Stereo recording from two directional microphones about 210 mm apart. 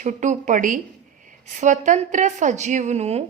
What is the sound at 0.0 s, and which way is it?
A woman's voice, 35° right (ahead or behind).